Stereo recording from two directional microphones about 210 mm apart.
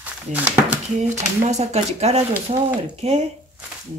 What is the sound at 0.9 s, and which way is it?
Speech, 35° right (ahead or behind).